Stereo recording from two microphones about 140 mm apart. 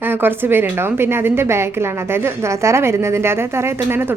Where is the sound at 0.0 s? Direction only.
15° right (ahead or behind).